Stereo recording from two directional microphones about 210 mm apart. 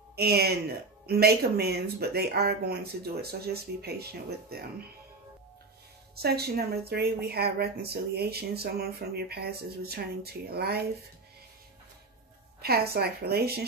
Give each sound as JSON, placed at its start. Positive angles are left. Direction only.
{"t": 0.1, "sound": "speech", "side_deg": -50}
{"t": 6.1, "sound": "speech", "side_deg": -50}
{"t": 12.6, "sound": "speech", "side_deg": -50}